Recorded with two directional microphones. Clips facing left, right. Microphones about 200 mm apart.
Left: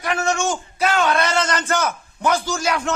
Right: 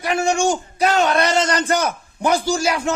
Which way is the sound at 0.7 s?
35° right (ahead or behind).